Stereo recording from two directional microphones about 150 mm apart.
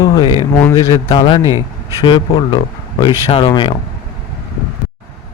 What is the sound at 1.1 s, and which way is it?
Speech, 35° left (ahead or behind).